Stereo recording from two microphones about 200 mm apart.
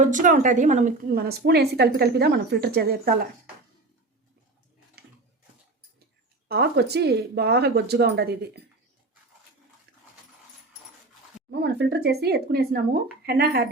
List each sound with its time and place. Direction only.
0.0 s a woman's voice: 40° right (ahead or behind)
1.2 s speech: 50° right (ahead or behind)
5.0 s a sound: 55° right (ahead or behind)
6.5 s speech: 55° right (ahead or behind)
11.5 s speech: 55° right (ahead or behind)